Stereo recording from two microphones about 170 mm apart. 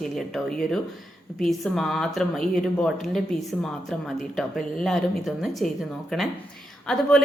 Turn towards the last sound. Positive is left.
turn(degrees=5)  # may be behind; listen again after turning